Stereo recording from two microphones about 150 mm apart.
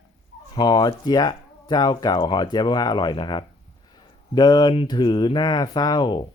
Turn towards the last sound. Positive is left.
turn(degrees=30)  # may be behind; listen again after turning